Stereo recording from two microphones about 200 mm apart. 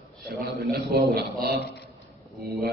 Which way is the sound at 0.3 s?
55° right (ahead or behind).